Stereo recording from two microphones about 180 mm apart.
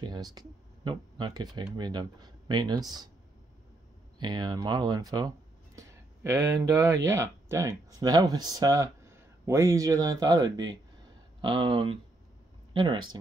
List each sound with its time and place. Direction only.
0.0 s speech: 25° right (ahead or behind)
4.2 s speech: 25° right (ahead or behind)